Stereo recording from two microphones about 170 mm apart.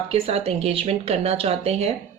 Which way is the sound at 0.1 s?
35° right (ahead or behind).